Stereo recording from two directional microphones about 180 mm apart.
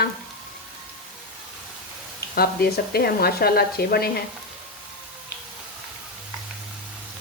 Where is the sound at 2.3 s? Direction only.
60° left (ahead or behind).